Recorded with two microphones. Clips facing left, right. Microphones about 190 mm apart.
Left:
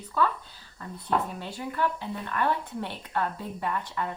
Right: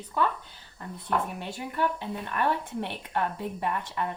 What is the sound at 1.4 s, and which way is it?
Speech, 20° right (ahead or behind).